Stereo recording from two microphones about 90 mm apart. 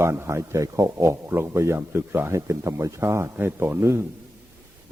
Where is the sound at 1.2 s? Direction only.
25° right (ahead or behind).